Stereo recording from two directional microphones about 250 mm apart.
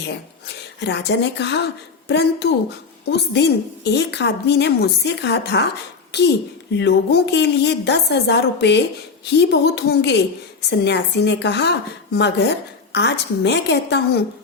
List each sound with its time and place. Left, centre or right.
0.4 s a woman's voice: left